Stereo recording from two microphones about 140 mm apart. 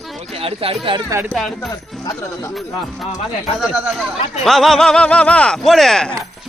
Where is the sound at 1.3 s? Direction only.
Centre (ahead or behind).